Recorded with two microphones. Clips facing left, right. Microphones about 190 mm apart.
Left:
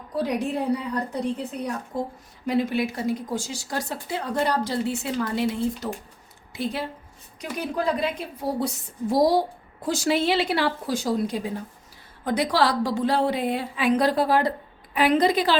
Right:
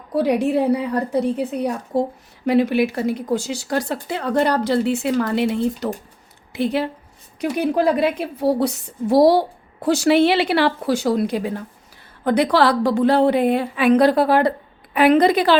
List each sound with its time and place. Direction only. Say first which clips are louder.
0.1 s a woman's voice: right 8 dB; 70° right (ahead or behind)